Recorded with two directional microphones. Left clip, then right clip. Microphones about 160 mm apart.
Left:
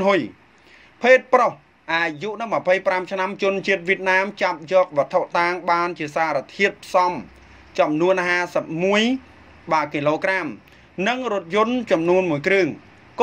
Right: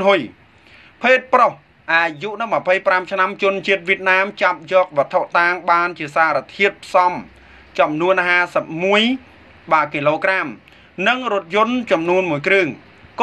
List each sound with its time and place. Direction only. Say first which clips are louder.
0.0 s a man's voice: right 4 dB; 55° left (ahead or behind)